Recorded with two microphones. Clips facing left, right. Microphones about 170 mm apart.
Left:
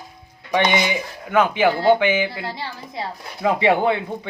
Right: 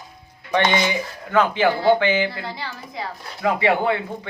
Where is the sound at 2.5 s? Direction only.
25° left (ahead or behind).